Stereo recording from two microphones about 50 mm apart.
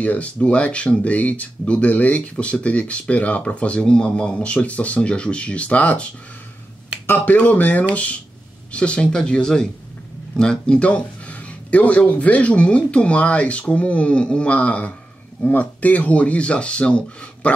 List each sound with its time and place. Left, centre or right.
0.0 s speech: left
7.2 s speech: left